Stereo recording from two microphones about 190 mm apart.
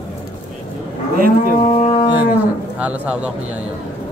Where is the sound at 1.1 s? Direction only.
50° right (ahead or behind).